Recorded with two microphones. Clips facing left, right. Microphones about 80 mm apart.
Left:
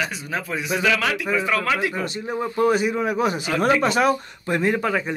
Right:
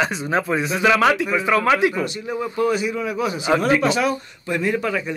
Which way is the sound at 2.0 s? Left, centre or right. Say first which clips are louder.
Right 1 dB; left.